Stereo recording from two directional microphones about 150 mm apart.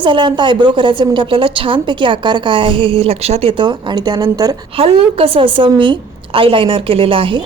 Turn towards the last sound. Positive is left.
turn(degrees=-35)  # may be behind; listen again after turning